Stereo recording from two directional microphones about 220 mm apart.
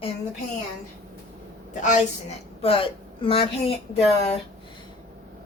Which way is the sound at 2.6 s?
25° left (ahead or behind).